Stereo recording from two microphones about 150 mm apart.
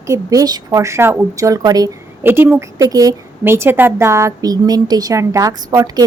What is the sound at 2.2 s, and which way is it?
A woman's voice, 15° right (ahead or behind).